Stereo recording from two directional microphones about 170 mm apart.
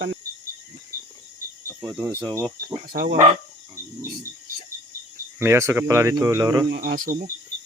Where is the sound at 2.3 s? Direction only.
20° right (ahead or behind).